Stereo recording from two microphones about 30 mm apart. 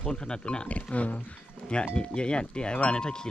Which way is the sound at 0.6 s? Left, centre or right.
Left.